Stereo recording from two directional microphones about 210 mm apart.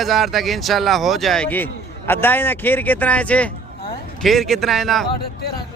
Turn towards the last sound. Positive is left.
turn(degrees=0)  # may be behind; listen again after turning